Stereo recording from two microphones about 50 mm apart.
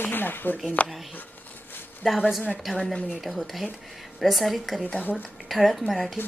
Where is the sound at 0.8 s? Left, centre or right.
Left.